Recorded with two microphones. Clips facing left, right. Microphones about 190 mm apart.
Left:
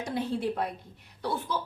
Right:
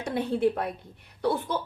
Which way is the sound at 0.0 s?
60° right (ahead or behind).